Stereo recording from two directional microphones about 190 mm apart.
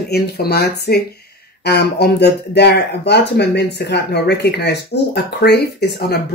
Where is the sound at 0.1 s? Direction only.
55° left (ahead or behind).